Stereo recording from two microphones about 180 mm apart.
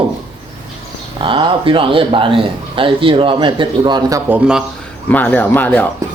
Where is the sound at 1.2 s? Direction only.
30° right (ahead or behind); by 4.6 s 10° right (ahead or behind).